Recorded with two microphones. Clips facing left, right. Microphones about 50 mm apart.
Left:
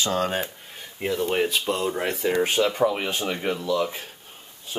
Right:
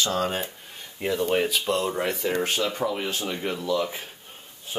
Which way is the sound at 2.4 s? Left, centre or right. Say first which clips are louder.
Left 5 dB; centre.